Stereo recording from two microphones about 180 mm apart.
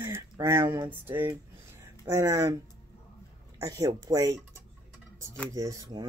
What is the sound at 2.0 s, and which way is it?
Speech, 15° right (ahead or behind).